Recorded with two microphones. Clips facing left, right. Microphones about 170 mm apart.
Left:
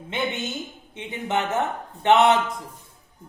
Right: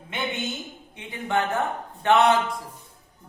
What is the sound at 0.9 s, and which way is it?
Speech, 20° left (ahead or behind).